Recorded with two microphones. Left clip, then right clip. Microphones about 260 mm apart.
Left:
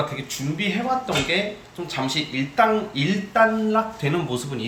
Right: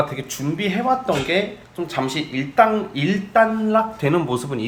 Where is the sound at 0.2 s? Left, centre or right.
Centre.